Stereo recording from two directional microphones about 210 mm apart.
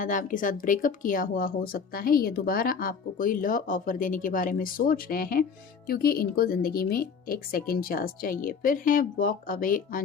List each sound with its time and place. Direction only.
0.0 s speech: 40° left (ahead or behind)